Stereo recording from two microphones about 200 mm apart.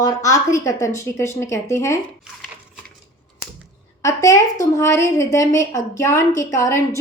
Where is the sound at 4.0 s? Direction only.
15° left (ahead or behind).